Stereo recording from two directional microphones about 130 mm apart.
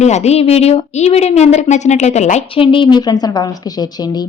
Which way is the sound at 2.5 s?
40° left (ahead or behind).